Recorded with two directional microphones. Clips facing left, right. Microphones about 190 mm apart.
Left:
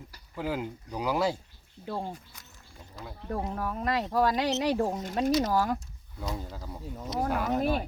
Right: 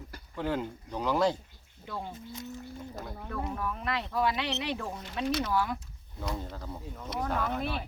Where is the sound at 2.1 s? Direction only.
20° right (ahead or behind).